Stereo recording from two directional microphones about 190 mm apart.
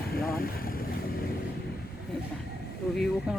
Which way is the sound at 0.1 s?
50° left (ahead or behind).